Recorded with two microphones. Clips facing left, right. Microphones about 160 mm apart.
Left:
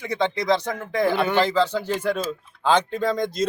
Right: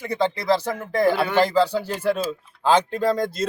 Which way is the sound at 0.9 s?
5° right (ahead or behind).